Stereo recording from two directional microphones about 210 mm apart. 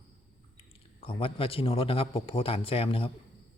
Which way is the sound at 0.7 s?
25° left (ahead or behind).